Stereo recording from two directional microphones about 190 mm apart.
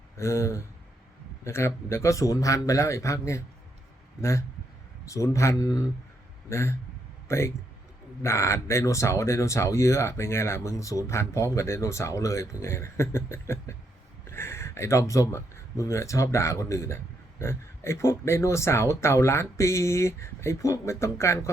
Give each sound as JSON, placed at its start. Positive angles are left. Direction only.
{"t": 0.2, "sound": "a man's voice", "side_deg": 15}